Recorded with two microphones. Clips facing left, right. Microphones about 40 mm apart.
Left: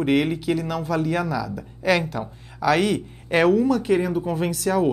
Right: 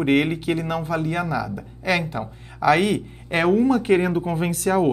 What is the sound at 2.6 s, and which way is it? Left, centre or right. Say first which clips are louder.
Speech: right 2 dB; right.